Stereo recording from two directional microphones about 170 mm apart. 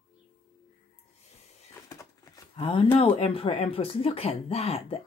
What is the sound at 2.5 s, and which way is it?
A woman's voice, 30° left (ahead or behind).